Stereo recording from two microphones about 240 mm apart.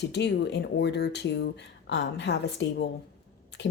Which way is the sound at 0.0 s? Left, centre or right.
Left.